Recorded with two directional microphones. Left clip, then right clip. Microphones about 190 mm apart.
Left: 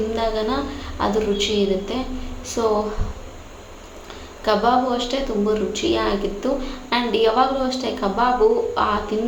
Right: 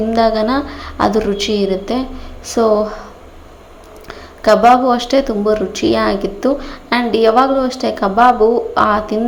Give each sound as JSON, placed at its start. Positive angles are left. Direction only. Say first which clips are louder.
{"t": 0.1, "sound": "speech", "louder": "right 9 dB", "side_deg": -35}
{"t": 4.4, "sound": "speech", "louder": "right 9 dB", "side_deg": -35}